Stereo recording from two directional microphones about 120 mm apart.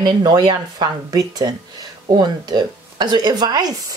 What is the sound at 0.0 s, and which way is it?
Speech, 40° right (ahead or behind).